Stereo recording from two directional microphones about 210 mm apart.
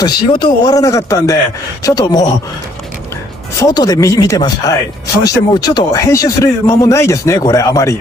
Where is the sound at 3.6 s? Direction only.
20° left (ahead or behind).